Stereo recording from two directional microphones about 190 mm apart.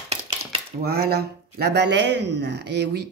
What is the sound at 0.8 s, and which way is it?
Speech, 55° right (ahead or behind).